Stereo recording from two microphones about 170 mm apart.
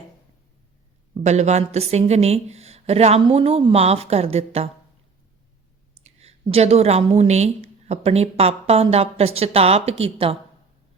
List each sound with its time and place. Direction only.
1.2 s a woman's voice: 40° right (ahead or behind)
6.1 s a woman's voice: 40° right (ahead or behind)